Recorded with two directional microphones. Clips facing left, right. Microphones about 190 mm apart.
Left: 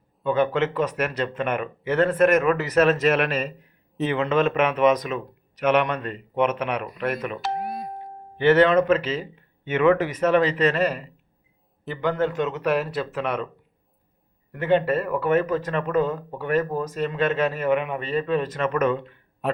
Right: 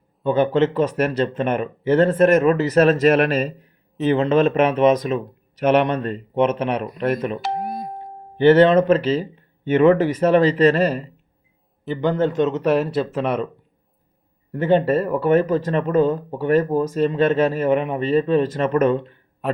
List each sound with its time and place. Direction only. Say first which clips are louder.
0.3 s speech: right 4 dB; 30° right (ahead or behind)
8.4 s speech: right 4 dB; 30° right (ahead or behind)
14.5 s speech: right 4 dB; 30° right (ahead or behind)